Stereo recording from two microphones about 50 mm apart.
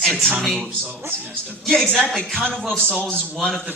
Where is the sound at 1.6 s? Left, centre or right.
Centre.